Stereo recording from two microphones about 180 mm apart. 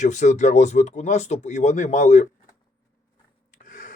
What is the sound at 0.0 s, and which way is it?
Speech, 40° left (ahead or behind).